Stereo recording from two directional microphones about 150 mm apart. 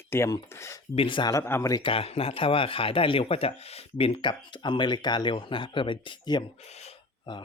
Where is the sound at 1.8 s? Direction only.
40° left (ahead or behind).